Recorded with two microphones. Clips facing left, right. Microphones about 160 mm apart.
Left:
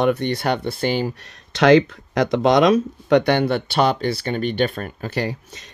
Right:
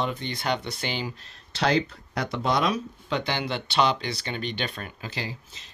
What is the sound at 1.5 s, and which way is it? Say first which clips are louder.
Speech: left 11 dB; 90° left.